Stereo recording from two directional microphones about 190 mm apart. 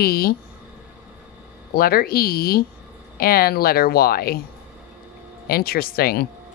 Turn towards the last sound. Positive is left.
turn(degrees=55)  # may be behind; listen again after turning